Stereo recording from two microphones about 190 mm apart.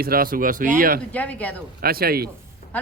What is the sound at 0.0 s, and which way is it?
Speech, 50° right (ahead or behind).